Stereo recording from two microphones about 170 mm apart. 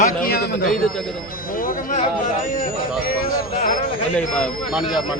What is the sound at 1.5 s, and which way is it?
Speech, 60° left (ahead or behind).